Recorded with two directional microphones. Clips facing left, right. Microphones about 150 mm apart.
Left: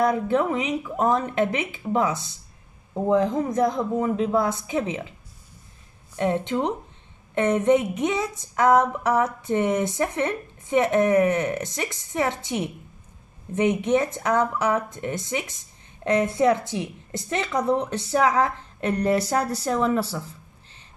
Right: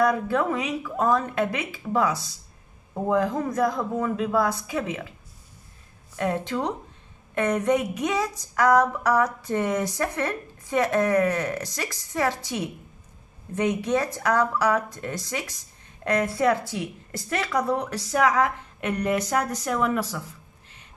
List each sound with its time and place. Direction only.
0.0 s a woman's voice: 20° left (ahead or behind)
6.1 s a woman's voice: 20° left (ahead or behind)